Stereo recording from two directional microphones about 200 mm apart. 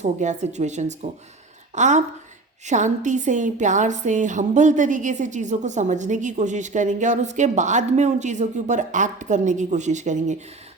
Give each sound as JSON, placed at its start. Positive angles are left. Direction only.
{"t": 0.0, "sound": "a woman's voice", "side_deg": -35}